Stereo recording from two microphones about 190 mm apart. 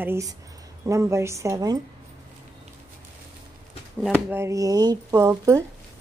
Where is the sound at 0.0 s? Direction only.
15° right (ahead or behind).